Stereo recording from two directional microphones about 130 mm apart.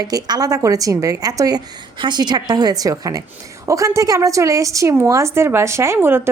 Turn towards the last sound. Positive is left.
turn(degrees=-15)  # may be behind; listen again after turning